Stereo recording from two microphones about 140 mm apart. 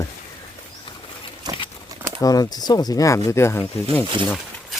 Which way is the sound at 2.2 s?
25° left (ahead or behind).